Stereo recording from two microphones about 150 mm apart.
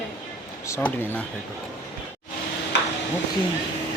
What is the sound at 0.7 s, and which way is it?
Speech, 15° left (ahead or behind).